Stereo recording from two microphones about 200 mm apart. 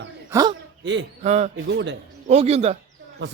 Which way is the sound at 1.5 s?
65° right (ahead or behind).